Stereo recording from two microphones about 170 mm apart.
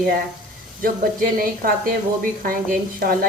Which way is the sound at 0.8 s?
55° right (ahead or behind).